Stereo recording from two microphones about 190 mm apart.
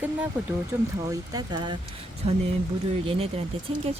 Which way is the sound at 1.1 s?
20° right (ahead or behind).